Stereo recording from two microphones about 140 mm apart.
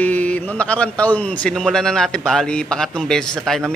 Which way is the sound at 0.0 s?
10° left (ahead or behind).